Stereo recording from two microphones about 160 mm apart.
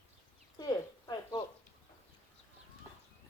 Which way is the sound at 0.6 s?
25° left (ahead or behind).